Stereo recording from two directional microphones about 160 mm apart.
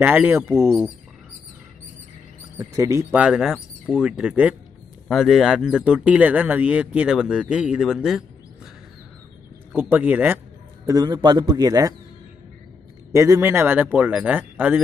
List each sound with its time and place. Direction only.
0.0 s speech: 10° right (ahead or behind)
2.6 s speech: 20° right (ahead or behind); by 8.3 s centre (ahead or behind)
9.8 s speech: 10° right (ahead or behind)
10.9 s a man's voice: 25° right (ahead or behind)
13.1 s speech: 20° right (ahead or behind)